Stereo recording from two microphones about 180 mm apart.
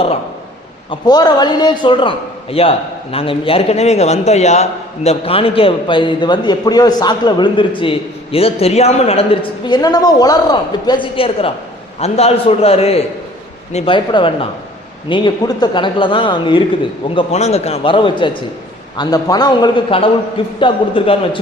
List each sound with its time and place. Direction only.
0.9 s a man's voice: 20° left (ahead or behind)